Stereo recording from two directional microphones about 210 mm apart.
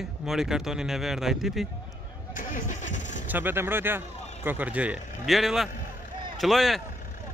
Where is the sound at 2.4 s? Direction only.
40° left (ahead or behind).